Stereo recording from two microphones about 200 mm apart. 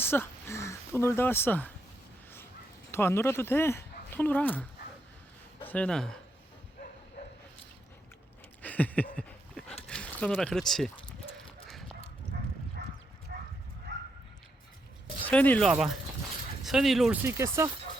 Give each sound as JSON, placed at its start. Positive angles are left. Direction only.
{"t": 0.0, "sound": "speech", "side_deg": 10}
{"t": 2.9, "sound": "speech", "side_deg": 10}
{"t": 8.6, "sound": "a sound", "side_deg": 10}
{"t": 9.8, "sound": "speech", "side_deg": 5}
{"t": 11.7, "sound": "dog", "side_deg": 0}
{"t": 13.3, "sound": "dog", "side_deg": -45}
{"t": 15.3, "sound": "speech", "side_deg": 5}
{"t": 17.2, "sound": "speech", "side_deg": -15}